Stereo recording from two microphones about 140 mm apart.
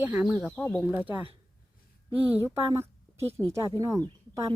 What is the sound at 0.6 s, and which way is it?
Speech, 10° left (ahead or behind).